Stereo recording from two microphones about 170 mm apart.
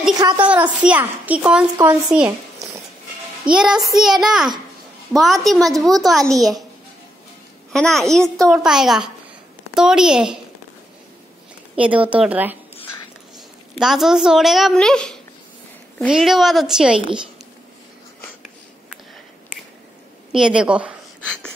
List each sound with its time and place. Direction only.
0.2 s a woman's voice: 20° right (ahead or behind)
0.8 s speech: 10° right (ahead or behind)
3.5 s a child's voice: 5° right (ahead or behind)
7.7 s a child's voice: centre (ahead or behind)
11.7 s speech: 10° right (ahead or behind)
13.7 s a child's voice: 5° right (ahead or behind)
20.3 s speech: 5° right (ahead or behind)